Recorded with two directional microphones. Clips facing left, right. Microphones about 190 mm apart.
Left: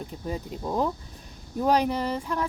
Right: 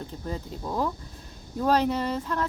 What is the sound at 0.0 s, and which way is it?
A woman's voice, 15° left (ahead or behind).